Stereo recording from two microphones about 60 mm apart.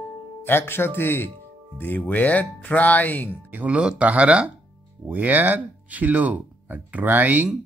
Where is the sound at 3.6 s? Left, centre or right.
Centre.